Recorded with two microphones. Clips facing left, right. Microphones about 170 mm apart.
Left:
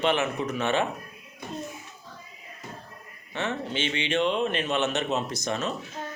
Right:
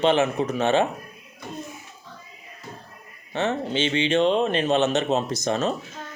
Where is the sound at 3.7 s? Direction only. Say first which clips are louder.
Right 6 dB; 25° right (ahead or behind).